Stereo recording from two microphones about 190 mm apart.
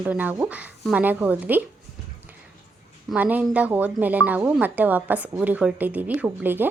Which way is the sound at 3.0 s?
10° right (ahead or behind).